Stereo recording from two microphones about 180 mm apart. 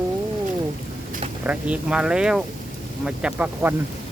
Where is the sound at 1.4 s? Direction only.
5° right (ahead or behind).